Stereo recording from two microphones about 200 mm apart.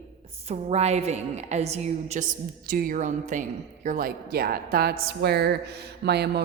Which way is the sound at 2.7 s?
45° right (ahead or behind).